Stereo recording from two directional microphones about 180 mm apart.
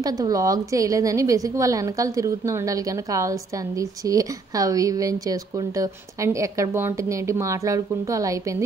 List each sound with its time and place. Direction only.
0.0 s a woman's voice: 20° right (ahead or behind)